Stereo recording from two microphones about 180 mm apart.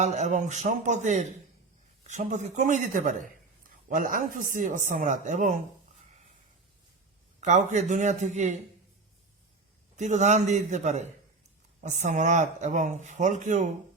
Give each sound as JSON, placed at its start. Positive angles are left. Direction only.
{"t": 0.0, "sound": "speech", "side_deg": -40}
{"t": 7.4, "sound": "speech", "side_deg": -40}
{"t": 9.9, "sound": "speech", "side_deg": -40}